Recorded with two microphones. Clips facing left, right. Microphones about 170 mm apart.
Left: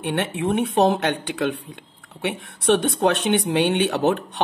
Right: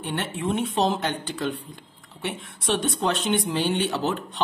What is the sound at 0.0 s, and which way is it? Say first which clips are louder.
Speech: left 5 dB; 65° left (ahead or behind).